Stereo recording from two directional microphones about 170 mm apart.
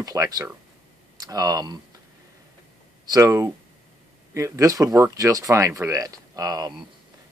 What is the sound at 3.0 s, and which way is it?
Speech, 20° right (ahead or behind).